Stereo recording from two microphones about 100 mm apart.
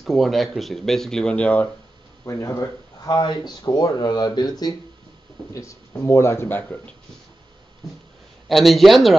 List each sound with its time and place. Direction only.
0.0 s speech: centre (ahead or behind)
2.2 s speech: 30° left (ahead or behind)
3.2 s speech: 45° left (ahead or behind)
5.5 s a man's voice: 30° left (ahead or behind)
8.5 s speech: centre (ahead or behind)